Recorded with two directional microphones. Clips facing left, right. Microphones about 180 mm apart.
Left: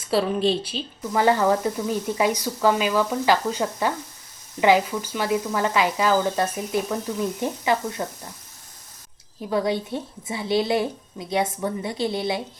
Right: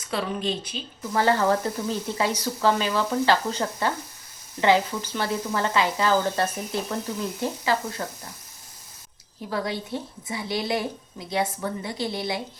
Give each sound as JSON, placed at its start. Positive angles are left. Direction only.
{"t": 0.1, "sound": "a woman's voice", "side_deg": 25}
{"t": 1.1, "sound": "frying", "side_deg": 15}
{"t": 7.4, "sound": "a woman's voice", "side_deg": 20}
{"t": 9.5, "sound": "a woman's voice", "side_deg": 20}